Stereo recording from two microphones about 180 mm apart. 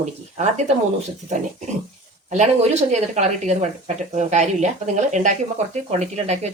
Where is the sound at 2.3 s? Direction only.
40° right (ahead or behind).